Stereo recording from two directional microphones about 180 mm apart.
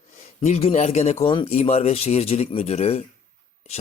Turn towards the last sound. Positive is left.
turn(degrees=35)  # may be behind; listen again after turning